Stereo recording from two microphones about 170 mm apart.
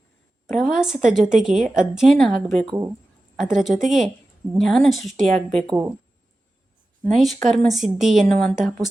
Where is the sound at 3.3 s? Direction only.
Centre (ahead or behind).